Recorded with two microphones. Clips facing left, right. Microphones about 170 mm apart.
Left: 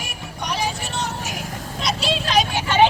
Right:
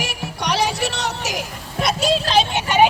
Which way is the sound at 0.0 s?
80° right.